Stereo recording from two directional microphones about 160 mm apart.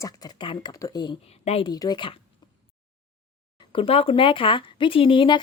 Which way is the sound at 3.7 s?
35° left (ahead or behind).